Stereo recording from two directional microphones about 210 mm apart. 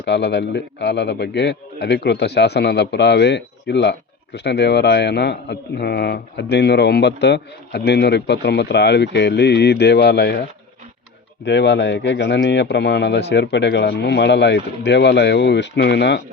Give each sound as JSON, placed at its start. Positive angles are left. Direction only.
{"t": 0.0, "sound": "a man's voice", "side_deg": 55}
{"t": 11.4, "sound": "a man's voice", "side_deg": 55}